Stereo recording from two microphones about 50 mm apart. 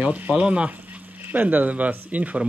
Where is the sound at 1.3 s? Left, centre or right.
Right.